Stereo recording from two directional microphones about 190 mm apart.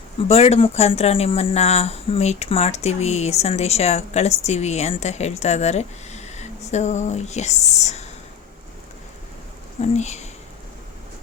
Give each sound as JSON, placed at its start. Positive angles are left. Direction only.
{"t": 0.3, "sound": "speech", "side_deg": 30}
{"t": 9.9, "sound": "speech", "side_deg": 35}